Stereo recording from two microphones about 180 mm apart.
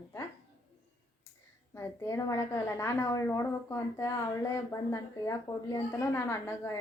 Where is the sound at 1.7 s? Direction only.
15° left (ahead or behind).